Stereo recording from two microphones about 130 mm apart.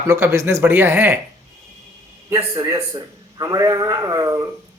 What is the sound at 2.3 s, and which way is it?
Speech, 25° right (ahead or behind).